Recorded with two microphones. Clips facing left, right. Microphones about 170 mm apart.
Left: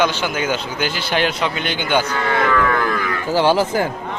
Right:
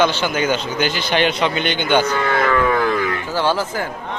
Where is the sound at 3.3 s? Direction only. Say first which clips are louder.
Left 6 dB; 15° left (ahead or behind).